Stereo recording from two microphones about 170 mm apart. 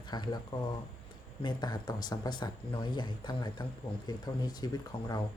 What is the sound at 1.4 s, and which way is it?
Speech, 25° left (ahead or behind).